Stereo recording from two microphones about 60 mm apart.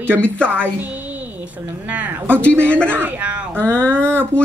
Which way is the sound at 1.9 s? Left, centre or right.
Right.